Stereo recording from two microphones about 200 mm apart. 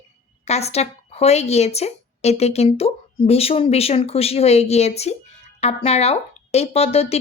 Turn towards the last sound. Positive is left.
turn(degrees=30)  # may be behind; listen again after turning